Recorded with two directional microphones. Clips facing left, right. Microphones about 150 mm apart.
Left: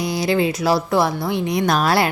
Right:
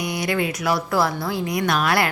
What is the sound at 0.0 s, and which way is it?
Speech, 30° left (ahead or behind).